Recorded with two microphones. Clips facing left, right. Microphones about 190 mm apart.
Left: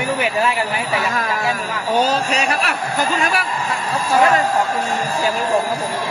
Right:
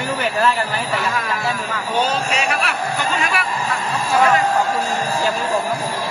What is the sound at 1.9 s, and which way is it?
Speech, 40° left (ahead or behind).